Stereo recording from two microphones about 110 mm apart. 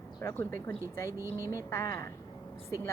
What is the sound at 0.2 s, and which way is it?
Speech, 25° left (ahead or behind).